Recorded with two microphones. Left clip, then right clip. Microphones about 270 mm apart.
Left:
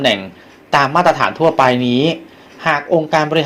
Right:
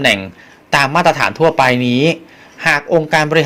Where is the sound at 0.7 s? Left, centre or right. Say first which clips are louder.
Even; right.